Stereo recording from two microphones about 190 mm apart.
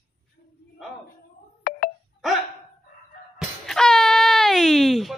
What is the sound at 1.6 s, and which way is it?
Telephone dialing, 50° left (ahead or behind).